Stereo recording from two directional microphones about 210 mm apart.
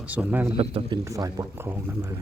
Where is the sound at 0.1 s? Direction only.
5° right (ahead or behind).